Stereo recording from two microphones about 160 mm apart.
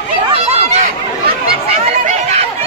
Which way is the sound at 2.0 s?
45° right (ahead or behind).